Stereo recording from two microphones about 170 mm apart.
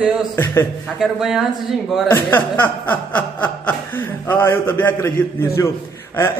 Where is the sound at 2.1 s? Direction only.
10° left (ahead or behind).